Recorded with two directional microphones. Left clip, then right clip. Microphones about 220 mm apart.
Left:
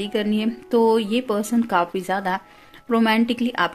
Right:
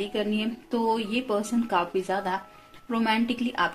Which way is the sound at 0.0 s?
45° left (ahead or behind).